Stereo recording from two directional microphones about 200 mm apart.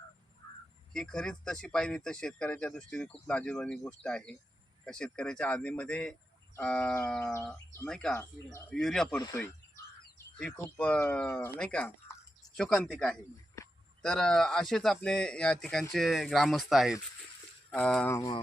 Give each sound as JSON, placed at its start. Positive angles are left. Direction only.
{"t": 0.9, "sound": "speech", "side_deg": 5}
{"t": 7.3, "sound": "speech", "side_deg": 15}
{"t": 9.1, "sound": "speech", "side_deg": 20}
{"t": 10.3, "sound": "speech", "side_deg": 5}